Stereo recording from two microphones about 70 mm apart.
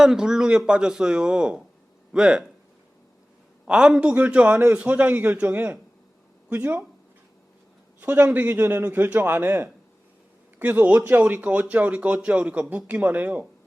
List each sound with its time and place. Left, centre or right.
0.0 s speech: centre
3.7 s speech: centre
8.0 s speech: right